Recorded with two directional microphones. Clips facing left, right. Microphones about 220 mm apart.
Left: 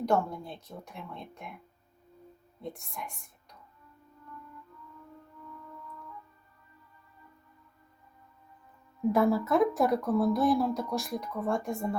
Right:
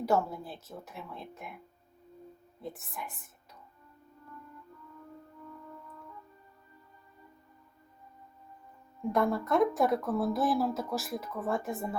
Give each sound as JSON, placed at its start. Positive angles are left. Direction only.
{"t": 0.0, "sound": "speech", "side_deg": -5}
{"t": 2.6, "sound": "speech", "side_deg": -5}
{"t": 9.1, "sound": "speech", "side_deg": 5}